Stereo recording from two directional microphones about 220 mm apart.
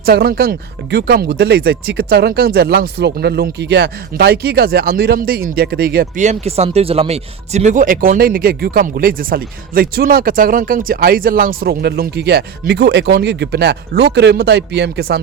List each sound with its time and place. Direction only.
0.0 s speech: 45° right (ahead or behind)